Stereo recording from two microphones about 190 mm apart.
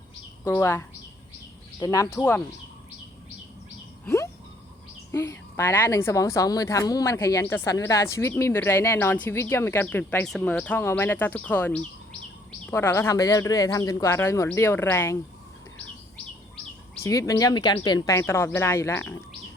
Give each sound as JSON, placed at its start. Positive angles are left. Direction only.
{"t": 0.4, "sound": "a woman's voice", "side_deg": 15}
{"t": 4.0, "sound": "a sound", "side_deg": 15}
{"t": 5.1, "sound": "a woman's voice", "side_deg": 15}
{"t": 16.9, "sound": "a woman's voice", "side_deg": 15}